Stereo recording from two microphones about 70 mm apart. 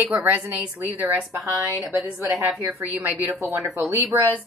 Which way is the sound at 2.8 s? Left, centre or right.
Right.